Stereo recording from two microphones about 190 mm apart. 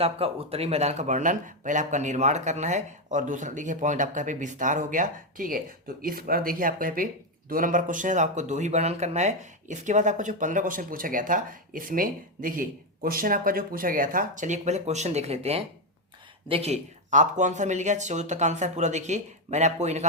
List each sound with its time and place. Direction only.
0.0 s speech: 30° right (ahead or behind)